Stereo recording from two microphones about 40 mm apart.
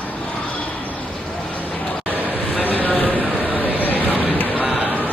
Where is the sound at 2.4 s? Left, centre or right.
Left.